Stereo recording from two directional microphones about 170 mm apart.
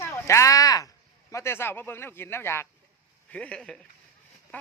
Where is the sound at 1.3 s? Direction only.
15° left (ahead or behind).